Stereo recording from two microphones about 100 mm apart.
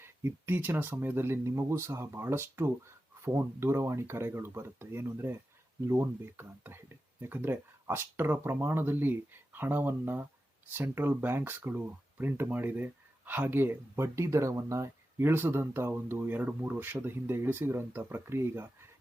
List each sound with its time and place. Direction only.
0.0 s speech: 25° right (ahead or behind)